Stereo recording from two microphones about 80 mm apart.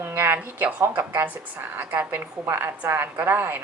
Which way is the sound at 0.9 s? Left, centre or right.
Right.